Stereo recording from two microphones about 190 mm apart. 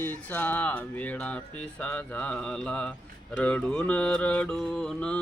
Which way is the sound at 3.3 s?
5° left (ahead or behind).